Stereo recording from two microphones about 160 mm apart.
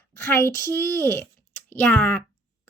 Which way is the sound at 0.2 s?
15° left (ahead or behind).